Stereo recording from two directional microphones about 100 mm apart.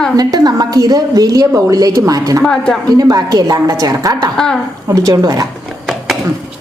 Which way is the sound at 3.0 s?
40° right (ahead or behind).